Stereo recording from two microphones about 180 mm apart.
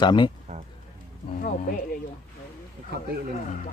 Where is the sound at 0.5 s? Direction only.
45° right (ahead or behind).